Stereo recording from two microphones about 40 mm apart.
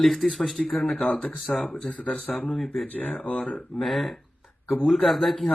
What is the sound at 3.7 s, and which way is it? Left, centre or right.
Speech, centre.